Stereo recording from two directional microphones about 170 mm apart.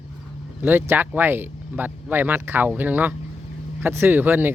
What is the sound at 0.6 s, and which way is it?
Speech, 10° right (ahead or behind).